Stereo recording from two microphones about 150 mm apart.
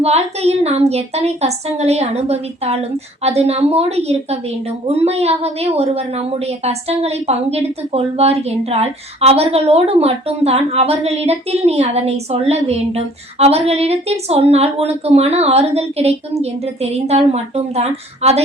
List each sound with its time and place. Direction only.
0.0 s a woman's voice: 45° right (ahead or behind)